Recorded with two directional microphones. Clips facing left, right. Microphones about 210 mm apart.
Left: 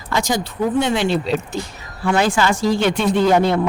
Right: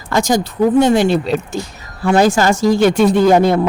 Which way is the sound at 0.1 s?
45° right (ahead or behind).